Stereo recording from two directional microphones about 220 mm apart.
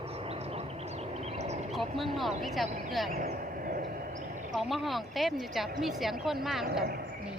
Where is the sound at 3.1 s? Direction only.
40° right (ahead or behind).